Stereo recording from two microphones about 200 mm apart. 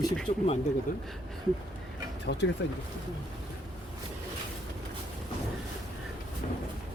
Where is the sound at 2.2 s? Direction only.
60° left (ahead or behind).